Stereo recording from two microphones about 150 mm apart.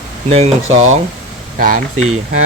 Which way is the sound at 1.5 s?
75° right (ahead or behind).